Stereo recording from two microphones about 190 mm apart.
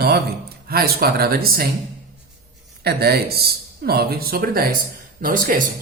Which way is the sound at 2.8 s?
55° right (ahead or behind).